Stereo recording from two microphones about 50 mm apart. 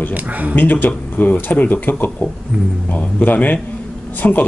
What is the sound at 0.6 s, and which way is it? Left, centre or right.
Speech, left.